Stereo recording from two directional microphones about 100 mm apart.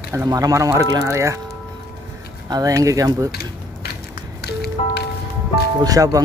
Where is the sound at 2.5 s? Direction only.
35° right (ahead or behind).